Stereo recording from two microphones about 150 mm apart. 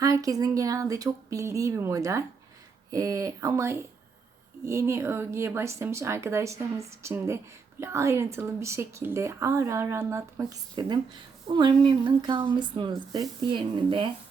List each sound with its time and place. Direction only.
0.0 s a woman's voice: 25° right (ahead or behind)